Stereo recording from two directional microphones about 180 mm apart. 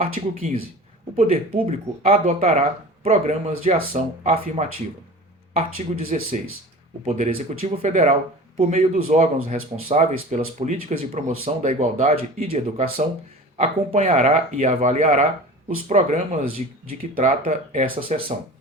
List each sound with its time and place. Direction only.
1.1 s speech: 30° right (ahead or behind)
5.7 s speech: 50° right (ahead or behind)
7.0 s speech: 35° right (ahead or behind)